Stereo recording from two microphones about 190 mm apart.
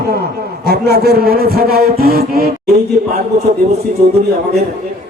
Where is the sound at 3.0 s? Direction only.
40° right (ahead or behind).